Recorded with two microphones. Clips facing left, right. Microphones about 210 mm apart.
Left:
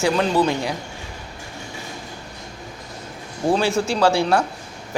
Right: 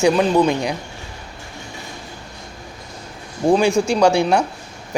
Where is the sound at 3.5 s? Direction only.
15° right (ahead or behind).